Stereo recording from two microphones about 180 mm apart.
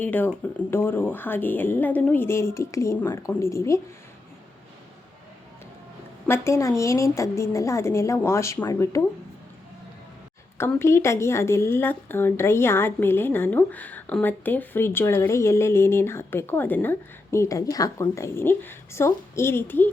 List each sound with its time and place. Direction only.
0.0 s a woman's voice: 10° left (ahead or behind)
6.2 s a woman's voice: 15° left (ahead or behind)
10.6 s a woman's voice: 15° left (ahead or behind)